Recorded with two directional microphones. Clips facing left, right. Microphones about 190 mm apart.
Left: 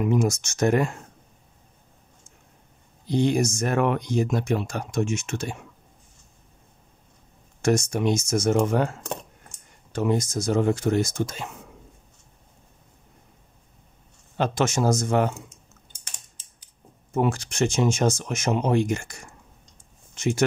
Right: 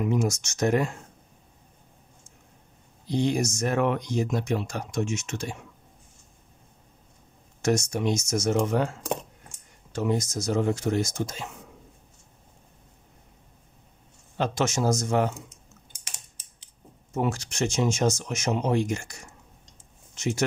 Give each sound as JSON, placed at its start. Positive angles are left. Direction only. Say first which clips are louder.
{"t": 0.0, "sound": "speech", "louder": "left 3 dB", "side_deg": 55}
{"t": 3.1, "sound": "speech", "louder": "left 3 dB", "side_deg": 60}
{"t": 7.6, "sound": "speech", "louder": "left 3 dB", "side_deg": 55}
{"t": 9.9, "sound": "speech", "louder": "left 3 dB", "side_deg": 55}
{"t": 14.3, "sound": "speech", "louder": "left 2 dB", "side_deg": 60}
{"t": 17.1, "sound": "speech", "louder": "left 4 dB", "side_deg": 55}